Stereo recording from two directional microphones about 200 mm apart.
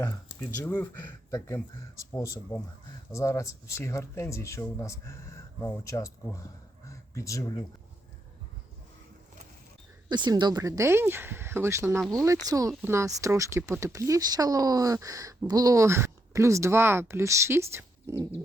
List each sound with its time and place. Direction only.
0.6 s speech: 10° left (ahead or behind)
10.1 s speech: 20° right (ahead or behind)